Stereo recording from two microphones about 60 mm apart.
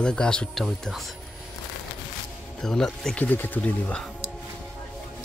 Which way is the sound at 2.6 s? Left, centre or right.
Centre.